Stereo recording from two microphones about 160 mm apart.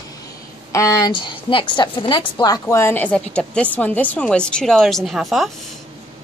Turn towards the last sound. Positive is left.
turn(degrees=0)  # may be behind; listen again after turning